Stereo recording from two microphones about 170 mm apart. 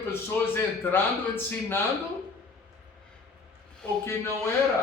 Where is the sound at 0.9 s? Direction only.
15° left (ahead or behind).